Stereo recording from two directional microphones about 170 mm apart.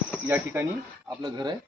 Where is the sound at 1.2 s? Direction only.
25° right (ahead or behind).